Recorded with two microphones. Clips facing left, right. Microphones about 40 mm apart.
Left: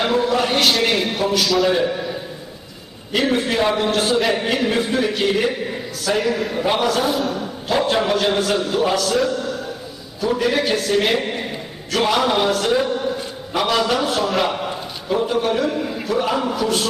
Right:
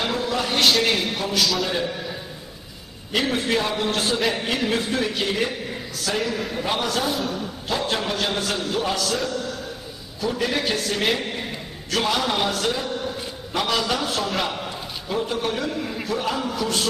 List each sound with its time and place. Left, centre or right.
0.0 s a sound: centre
0.6 s a man's voice: centre
1.7 s a man's voice: centre
3.1 s a man's voice: centre
11.1 s a man's voice: centre
12.7 s a man's voice: centre
16.2 s a man's voice: centre
16.5 s a man's voice: centre